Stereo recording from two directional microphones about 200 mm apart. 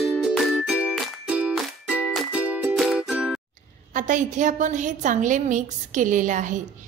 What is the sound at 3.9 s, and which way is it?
A woman's voice, 40° right (ahead or behind).